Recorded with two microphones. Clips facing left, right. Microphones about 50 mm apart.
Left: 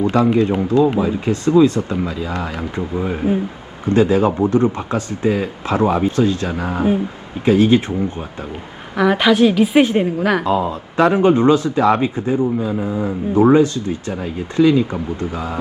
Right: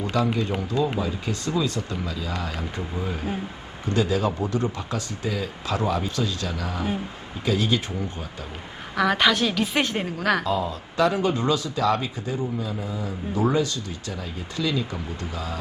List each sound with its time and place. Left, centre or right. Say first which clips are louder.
0.0 s speech: left 9 dB; left
9.0 s a woman's voice: left 7 dB; centre
10.4 s speech: left 7 dB; left